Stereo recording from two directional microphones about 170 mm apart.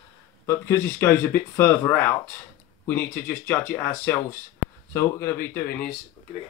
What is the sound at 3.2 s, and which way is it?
Speech, 10° left (ahead or behind).